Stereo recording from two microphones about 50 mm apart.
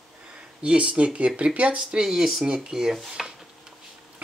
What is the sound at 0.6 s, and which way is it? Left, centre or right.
Speech, right.